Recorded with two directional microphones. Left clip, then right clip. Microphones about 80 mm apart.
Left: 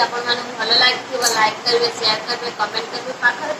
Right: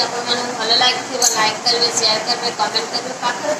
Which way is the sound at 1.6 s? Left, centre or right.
Right.